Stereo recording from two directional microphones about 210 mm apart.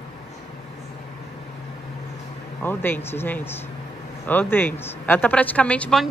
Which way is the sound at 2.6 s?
10° left (ahead or behind).